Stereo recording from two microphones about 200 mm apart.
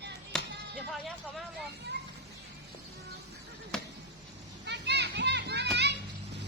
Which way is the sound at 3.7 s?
5° left (ahead or behind).